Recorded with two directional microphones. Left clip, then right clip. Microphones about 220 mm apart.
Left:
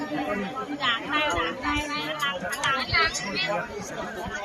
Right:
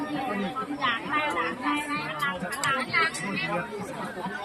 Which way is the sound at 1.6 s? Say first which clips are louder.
Left 1 dB; 50° left (ahead or behind).